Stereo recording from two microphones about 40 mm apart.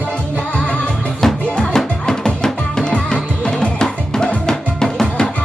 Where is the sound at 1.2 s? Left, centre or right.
Centre.